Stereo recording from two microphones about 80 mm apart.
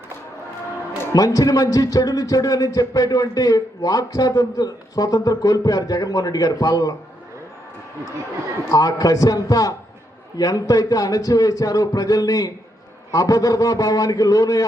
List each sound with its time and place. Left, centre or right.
1.1 s a man's voice: left
8.7 s a man's voice: left